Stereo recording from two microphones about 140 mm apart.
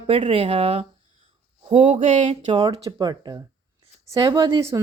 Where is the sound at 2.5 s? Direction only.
40° right (ahead or behind).